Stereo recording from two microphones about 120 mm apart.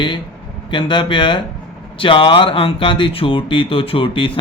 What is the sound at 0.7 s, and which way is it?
Speech, 40° left (ahead or behind).